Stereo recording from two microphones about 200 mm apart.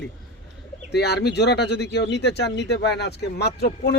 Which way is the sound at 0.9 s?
55° left (ahead or behind).